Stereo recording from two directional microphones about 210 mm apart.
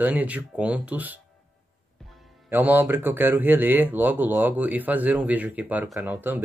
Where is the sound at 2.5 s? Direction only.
10° right (ahead or behind).